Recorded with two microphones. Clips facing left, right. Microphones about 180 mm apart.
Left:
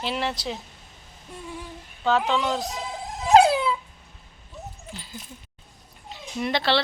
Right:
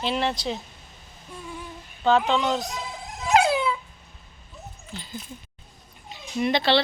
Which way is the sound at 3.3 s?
35° left (ahead or behind).